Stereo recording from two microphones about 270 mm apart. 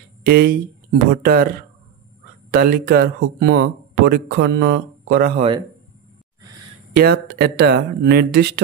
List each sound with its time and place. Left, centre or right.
0.2 s speech: right
7.0 s speech: right